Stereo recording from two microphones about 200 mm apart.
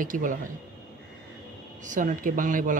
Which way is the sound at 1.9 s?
40° right (ahead or behind).